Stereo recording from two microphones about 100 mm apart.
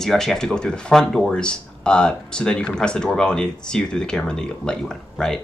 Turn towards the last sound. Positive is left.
turn(degrees=5)  # may be behind; listen again after turning